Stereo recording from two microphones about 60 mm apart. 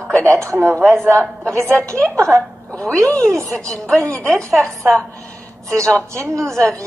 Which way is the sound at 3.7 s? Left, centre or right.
Centre.